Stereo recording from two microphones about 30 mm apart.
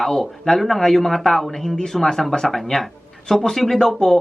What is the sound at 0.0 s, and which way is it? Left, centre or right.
Speech, centre.